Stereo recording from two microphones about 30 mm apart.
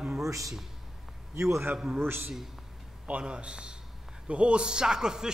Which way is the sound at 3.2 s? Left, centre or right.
Right.